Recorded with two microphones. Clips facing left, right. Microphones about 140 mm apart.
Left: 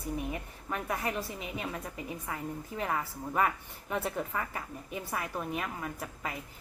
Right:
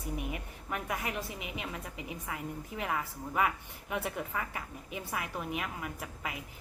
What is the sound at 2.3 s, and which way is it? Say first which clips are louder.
A woman's voice: left 1 dB; 35° left (ahead or behind).